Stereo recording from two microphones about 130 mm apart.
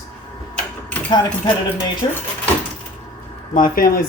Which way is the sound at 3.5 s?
90° left.